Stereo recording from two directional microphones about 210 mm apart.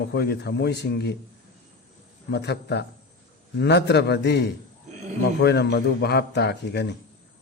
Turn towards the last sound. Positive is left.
turn(degrees=55)  # may be behind; listen again after turning